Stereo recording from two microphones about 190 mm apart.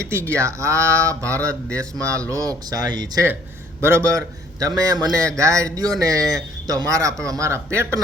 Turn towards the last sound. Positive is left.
turn(degrees=-15)  # may be behind; listen again after turning